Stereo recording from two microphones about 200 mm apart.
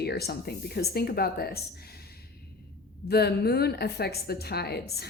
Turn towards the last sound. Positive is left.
turn(degrees=55)  # may be behind; listen again after turning